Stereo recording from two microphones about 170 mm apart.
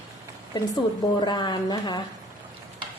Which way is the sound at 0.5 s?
25° left (ahead or behind).